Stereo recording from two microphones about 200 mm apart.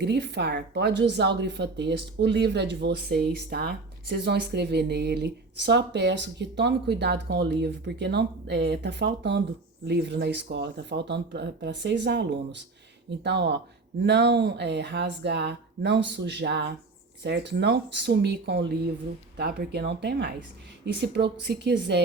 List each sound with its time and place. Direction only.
0.0 s speech: 60° right (ahead or behind)